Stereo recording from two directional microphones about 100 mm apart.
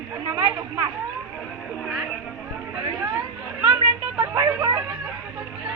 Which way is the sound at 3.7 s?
40° right (ahead or behind).